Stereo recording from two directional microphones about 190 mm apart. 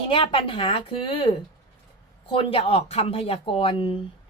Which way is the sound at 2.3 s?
30° left (ahead or behind).